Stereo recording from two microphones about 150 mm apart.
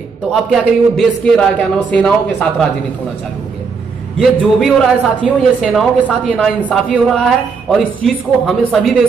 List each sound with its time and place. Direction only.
0.3 s speech: 5° left (ahead or behind)
4.2 s speech: centre (ahead or behind)